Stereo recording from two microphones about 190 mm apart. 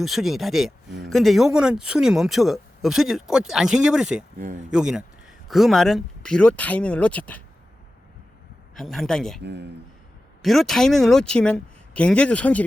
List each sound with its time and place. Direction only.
0.0 s speech: centre (ahead or behind)
8.7 s speech: centre (ahead or behind)
9.4 s speech: 65° right (ahead or behind)
10.4 s speech: centre (ahead or behind)